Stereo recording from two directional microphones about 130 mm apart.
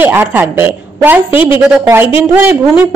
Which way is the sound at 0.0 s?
15° right (ahead or behind).